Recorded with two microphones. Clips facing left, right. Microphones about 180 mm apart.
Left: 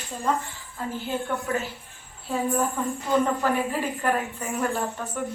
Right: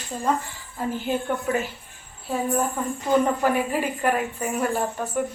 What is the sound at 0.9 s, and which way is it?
Speech, 15° right (ahead or behind).